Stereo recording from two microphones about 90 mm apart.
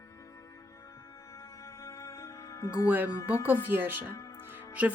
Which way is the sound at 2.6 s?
35° left (ahead or behind).